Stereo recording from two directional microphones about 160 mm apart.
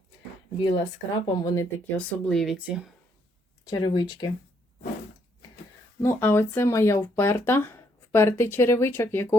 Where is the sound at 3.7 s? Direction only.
25° left (ahead or behind).